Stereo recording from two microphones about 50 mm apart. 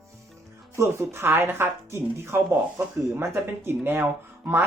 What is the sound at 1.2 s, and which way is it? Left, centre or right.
Speech, right.